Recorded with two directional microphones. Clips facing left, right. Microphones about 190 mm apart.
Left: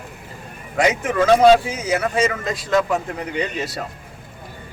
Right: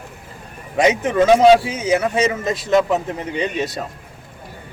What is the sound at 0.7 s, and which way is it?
A man's voice, 20° right (ahead or behind).